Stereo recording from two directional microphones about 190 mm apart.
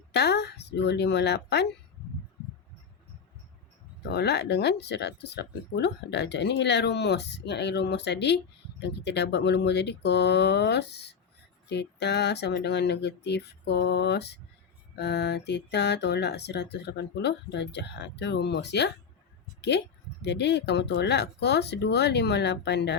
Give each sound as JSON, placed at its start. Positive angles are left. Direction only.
{"t": 0.1, "sound": "speech", "side_deg": 60}
{"t": 4.1, "sound": "speech", "side_deg": 60}